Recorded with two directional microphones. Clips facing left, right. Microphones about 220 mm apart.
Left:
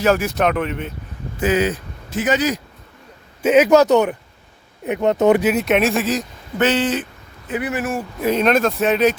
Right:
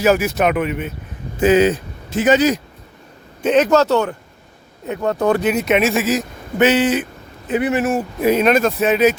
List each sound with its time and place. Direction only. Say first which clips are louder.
0.0 s speech: right 2 dB; 5° right (ahead or behind)
1.4 s speech: right 5 dB; 25° right (ahead or behind)
3.4 s speech: left 2 dB; 10° left (ahead or behind)
5.4 s speech: even; centre (ahead or behind)
7.4 s speech: right 5 dB; 25° right (ahead or behind)
8.3 s speech: right 2 dB; 5° right (ahead or behind)